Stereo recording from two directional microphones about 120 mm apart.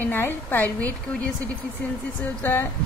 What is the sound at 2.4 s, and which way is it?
Speech, 20° left (ahead or behind).